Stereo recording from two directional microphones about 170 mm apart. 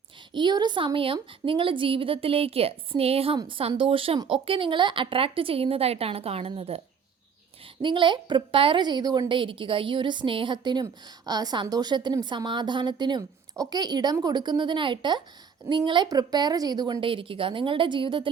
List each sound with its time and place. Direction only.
0.3 s a woman's voice: 25° right (ahead or behind)